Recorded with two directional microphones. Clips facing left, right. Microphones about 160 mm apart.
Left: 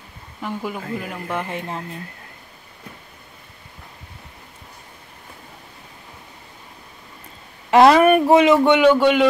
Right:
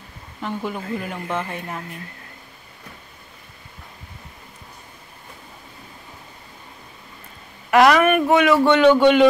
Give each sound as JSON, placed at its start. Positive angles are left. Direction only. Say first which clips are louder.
{"t": 0.4, "sound": "speech", "louder": "even", "side_deg": 10}
{"t": 1.4, "sound": "a man's voice", "louder": "left 2 dB", "side_deg": 20}
{"t": 7.7, "sound": "a man's voice", "louder": "left 3 dB", "side_deg": 30}